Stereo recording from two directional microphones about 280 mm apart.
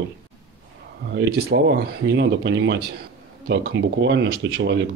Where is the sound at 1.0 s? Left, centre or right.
Right.